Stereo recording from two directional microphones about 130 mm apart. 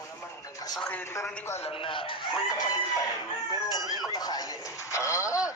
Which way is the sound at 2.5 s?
30° left (ahead or behind).